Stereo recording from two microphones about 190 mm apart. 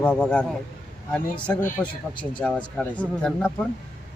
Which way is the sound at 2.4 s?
5° left (ahead or behind).